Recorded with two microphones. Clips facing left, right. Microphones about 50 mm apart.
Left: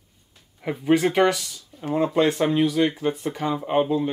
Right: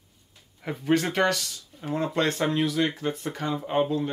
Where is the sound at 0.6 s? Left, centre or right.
Centre.